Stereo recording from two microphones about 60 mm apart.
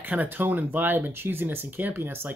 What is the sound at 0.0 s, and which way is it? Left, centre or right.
Speech, right.